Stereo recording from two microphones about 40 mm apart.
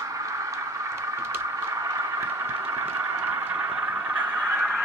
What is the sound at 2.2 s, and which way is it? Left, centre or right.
Vehicle, right.